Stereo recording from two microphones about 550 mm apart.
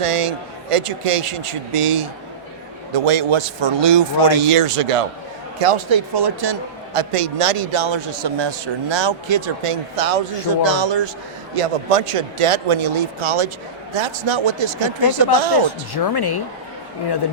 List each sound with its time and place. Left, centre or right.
0.0 s a man's voice: right
4.4 s a man's voice: right
6.9 s a man's voice: right
9.9 s a man's voice: right
10.5 s a man's voice: right
11.5 s a man's voice: right
16.1 s speech: left